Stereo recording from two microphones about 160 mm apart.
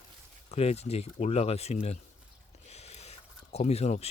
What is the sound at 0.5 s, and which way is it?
Speech, 40° left (ahead or behind).